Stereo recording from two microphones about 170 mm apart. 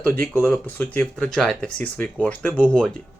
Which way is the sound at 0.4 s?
10° left (ahead or behind).